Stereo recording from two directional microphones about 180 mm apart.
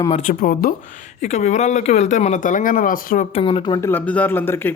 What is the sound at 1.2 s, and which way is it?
Speech, 40° left (ahead or behind).